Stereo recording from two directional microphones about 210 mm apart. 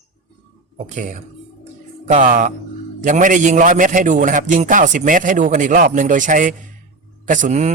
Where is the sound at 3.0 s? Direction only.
40° right (ahead or behind).